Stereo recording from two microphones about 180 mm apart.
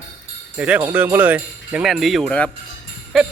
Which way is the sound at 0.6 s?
10° right (ahead or behind).